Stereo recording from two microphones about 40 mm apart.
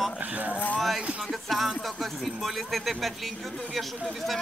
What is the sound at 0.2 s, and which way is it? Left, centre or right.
Speech, right.